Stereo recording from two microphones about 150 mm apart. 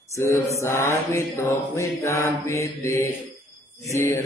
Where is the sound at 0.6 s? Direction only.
15° left (ahead or behind).